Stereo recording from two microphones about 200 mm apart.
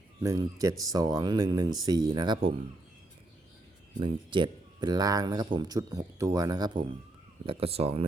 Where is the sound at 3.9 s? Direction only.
25° right (ahead or behind).